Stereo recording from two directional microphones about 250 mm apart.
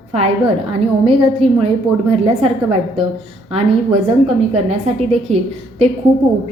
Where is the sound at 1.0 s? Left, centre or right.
Right.